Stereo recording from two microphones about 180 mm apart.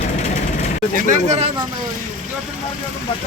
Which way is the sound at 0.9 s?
40° right (ahead or behind).